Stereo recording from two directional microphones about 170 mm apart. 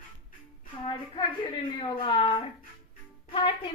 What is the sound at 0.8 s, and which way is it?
A woman's voice, 25° left (ahead or behind).